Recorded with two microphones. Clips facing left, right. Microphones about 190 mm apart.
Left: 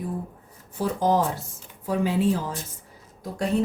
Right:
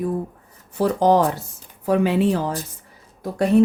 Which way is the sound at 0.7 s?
70° right (ahead or behind).